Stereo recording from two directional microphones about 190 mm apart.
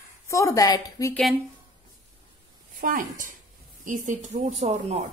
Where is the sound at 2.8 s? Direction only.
45° right (ahead or behind).